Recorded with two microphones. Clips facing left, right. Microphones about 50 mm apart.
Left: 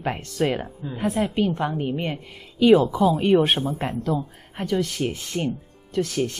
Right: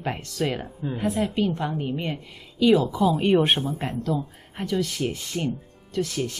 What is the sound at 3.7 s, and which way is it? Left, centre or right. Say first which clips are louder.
Speech: left 2 dB; left.